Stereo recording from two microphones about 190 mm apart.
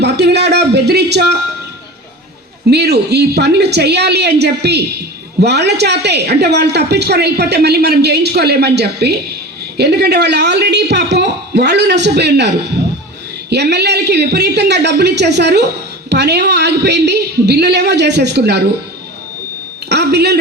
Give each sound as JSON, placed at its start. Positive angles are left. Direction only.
{"t": 0.0, "sound": "a woman's voice", "side_deg": -60}
{"t": 2.6, "sound": "a woman's voice", "side_deg": -60}
{"t": 19.9, "sound": "a woman's voice", "side_deg": -60}